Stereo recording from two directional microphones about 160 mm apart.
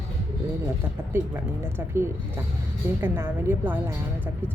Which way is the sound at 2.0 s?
15° right (ahead or behind).